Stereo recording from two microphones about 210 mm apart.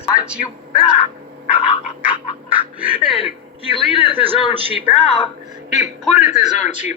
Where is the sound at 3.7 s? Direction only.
25° left (ahead or behind).